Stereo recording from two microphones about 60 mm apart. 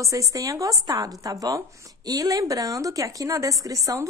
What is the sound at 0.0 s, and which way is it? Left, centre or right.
A woman's voice, right.